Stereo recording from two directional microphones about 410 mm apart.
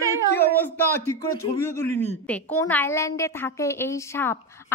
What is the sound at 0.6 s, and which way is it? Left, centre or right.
A woman's voice, centre.